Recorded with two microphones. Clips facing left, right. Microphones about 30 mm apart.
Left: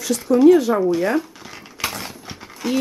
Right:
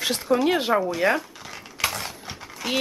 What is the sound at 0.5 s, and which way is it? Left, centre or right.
Speech, right.